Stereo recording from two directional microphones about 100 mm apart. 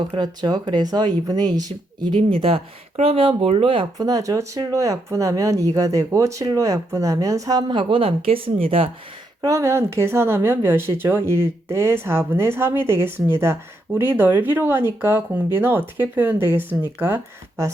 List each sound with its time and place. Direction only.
0.2 s speech: 45° right (ahead or behind)
2.1 s speech: 65° right (ahead or behind)
3.9 s speech: 40° right (ahead or behind)
7.7 s speech: 55° right (ahead or behind)
9.4 s a woman's voice: 30° right (ahead or behind)